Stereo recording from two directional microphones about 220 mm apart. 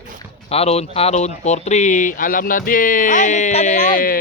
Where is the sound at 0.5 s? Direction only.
30° left (ahead or behind).